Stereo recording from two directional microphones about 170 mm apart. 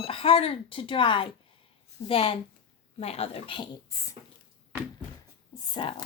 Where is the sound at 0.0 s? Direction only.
35° left (ahead or behind).